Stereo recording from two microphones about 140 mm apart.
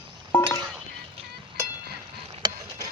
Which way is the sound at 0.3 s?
25° left (ahead or behind).